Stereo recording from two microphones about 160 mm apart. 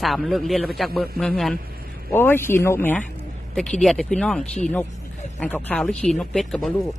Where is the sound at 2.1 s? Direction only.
15° left (ahead or behind).